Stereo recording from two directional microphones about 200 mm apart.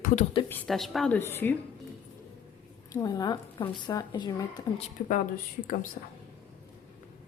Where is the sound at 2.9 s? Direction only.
20° left (ahead or behind).